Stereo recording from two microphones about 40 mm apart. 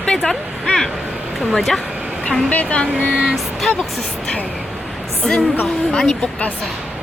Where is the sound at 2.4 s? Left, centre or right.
Left.